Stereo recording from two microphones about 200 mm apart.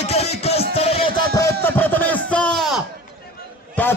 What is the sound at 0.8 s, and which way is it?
Music, 30° left (ahead or behind).